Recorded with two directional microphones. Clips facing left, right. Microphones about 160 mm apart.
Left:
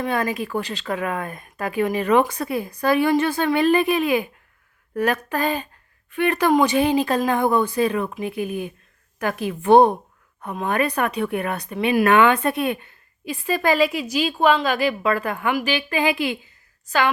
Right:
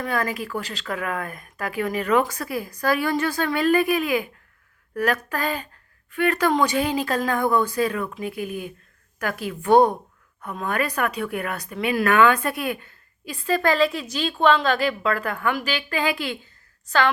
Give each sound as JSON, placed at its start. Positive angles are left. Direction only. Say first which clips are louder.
{"t": 0.0, "sound": "a woman's voice", "louder": "left 3 dB", "side_deg": 25}